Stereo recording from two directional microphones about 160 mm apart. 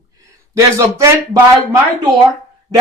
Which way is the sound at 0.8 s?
20° right (ahead or behind).